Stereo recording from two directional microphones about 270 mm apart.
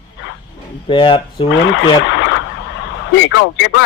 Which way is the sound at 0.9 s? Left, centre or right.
Centre.